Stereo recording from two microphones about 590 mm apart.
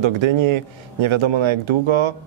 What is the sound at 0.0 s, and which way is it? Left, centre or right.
A man's voice, right.